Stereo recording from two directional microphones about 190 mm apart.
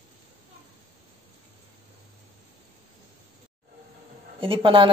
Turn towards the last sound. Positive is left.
turn(degrees=-30)  # may be behind; listen again after turning